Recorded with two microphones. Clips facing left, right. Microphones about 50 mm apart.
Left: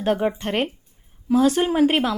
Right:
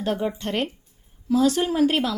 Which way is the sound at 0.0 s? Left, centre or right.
Left.